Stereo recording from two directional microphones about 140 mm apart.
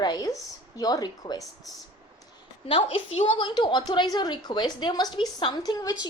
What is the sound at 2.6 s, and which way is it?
A woman's voice, 40° left (ahead or behind).